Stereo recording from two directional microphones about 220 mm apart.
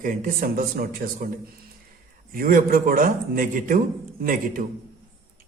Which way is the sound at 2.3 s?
40° right (ahead or behind).